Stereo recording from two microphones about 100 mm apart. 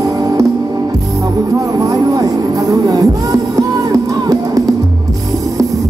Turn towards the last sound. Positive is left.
turn(degrees=-35)  # may be behind; listen again after turning